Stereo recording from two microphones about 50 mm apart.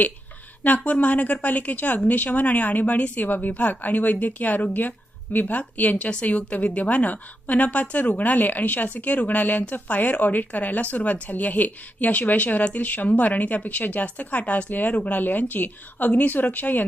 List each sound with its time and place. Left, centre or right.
0.6 s a woman's voice: left